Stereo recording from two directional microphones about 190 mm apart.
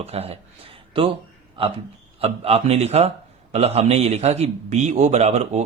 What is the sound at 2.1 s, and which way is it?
A man's voice, 30° right (ahead or behind).